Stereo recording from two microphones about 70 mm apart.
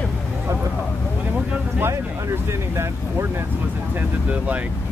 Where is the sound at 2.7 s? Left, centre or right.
Right.